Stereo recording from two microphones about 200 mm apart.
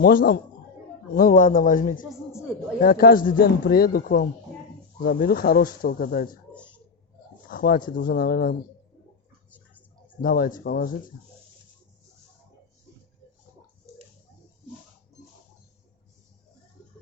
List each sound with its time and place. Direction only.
0.0 s speech: 45° left (ahead or behind)
7.5 s a sound: 45° left (ahead or behind)
7.9 s speech: 45° left (ahead or behind)
10.2 s speech: 45° left (ahead or behind)